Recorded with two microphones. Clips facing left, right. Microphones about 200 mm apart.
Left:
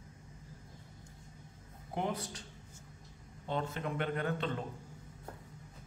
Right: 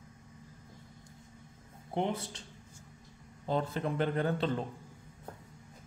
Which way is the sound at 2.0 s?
25° right (ahead or behind).